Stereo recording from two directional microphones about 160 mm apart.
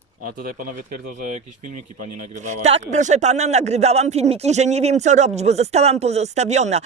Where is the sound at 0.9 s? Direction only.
50° right (ahead or behind).